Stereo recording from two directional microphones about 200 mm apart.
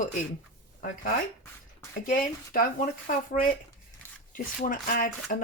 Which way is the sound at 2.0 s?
45° left (ahead or behind).